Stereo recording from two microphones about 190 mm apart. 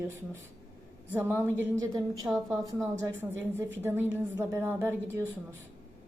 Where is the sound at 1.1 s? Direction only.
10° right (ahead or behind).